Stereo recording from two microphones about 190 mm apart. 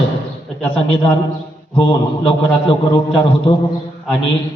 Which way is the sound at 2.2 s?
25° left (ahead or behind).